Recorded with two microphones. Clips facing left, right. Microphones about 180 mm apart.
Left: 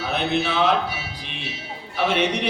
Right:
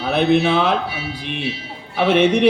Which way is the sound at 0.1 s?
55° right (ahead or behind).